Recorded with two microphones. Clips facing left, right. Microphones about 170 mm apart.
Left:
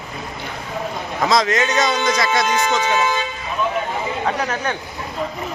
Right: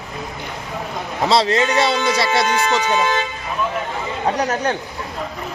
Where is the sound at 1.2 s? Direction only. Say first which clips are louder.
Right 1 dB; 30° right (ahead or behind).